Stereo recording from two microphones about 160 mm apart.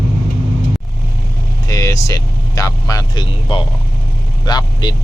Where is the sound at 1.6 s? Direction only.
20° left (ahead or behind).